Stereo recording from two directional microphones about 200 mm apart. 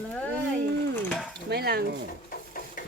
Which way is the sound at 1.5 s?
50° right (ahead or behind).